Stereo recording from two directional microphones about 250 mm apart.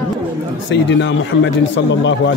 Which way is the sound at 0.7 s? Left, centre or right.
Left.